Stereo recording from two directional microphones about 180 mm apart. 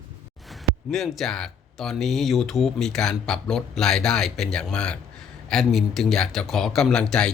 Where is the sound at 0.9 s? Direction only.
Centre (ahead or behind).